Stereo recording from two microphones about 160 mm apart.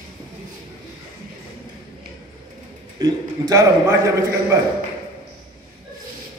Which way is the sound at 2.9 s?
20° right (ahead or behind).